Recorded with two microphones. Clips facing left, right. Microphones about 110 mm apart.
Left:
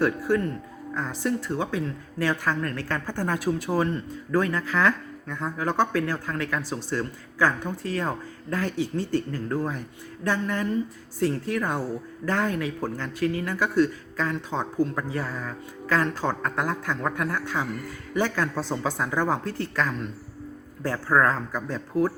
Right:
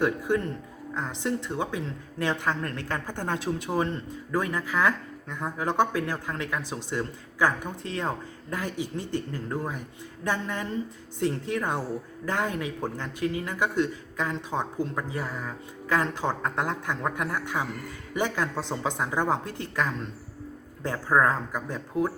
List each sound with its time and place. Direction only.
0.0 s a woman's voice: 20° right (ahead or behind)